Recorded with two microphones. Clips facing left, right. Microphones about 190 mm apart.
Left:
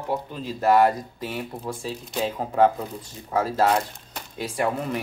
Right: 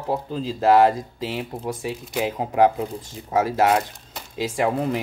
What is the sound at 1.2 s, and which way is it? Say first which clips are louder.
Speech: right 3 dB; 25° right (ahead or behind).